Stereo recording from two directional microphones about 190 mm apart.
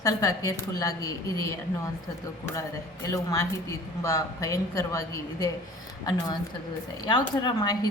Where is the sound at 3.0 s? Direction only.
20° left (ahead or behind).